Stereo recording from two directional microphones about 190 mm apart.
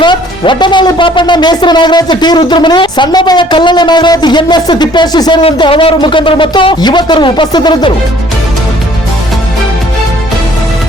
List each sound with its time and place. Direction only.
0.0 s speech: 25° left (ahead or behind)